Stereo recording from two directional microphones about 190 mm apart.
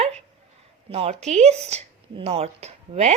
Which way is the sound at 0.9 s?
30° right (ahead or behind).